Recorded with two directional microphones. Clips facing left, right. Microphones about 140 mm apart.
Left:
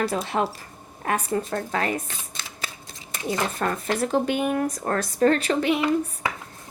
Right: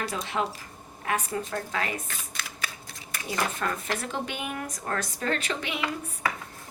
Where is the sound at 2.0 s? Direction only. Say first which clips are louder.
Even; 25° left (ahead or behind).